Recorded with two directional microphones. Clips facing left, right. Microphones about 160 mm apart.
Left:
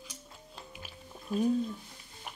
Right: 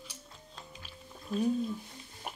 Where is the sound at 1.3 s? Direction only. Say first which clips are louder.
Left 1 dB; 5° left (ahead or behind).